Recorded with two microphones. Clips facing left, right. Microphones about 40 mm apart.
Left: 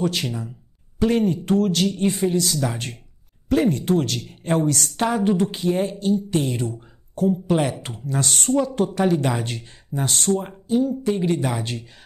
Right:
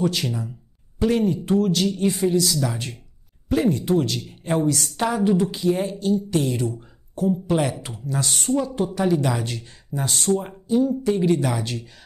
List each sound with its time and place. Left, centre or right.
0.0 s speech: left
5.1 s speech: left
9.0 s speech: left
10.0 s speech: left
11.1 s speech: left